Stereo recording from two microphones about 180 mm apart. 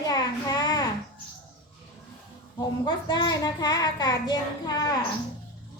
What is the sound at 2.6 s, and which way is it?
A child's voice, 25° left (ahead or behind).